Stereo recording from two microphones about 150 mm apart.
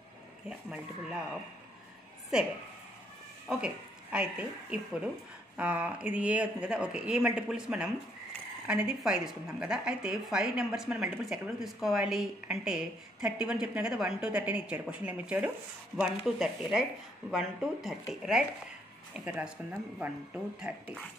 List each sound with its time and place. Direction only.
0.5 s a woman's voice: 5° right (ahead or behind)
3.4 s a woman's voice: 5° right (ahead or behind)